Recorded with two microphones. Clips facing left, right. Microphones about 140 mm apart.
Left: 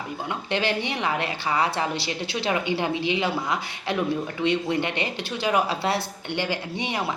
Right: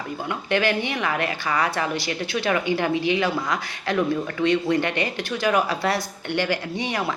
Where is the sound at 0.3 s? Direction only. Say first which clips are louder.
Right 4 dB; 25° left (ahead or behind).